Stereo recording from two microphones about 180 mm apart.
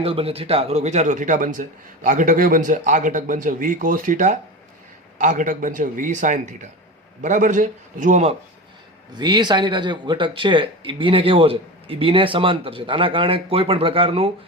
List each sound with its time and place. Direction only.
0.0 s speech: 30° right (ahead or behind)
9.1 s speech: 25° right (ahead or behind)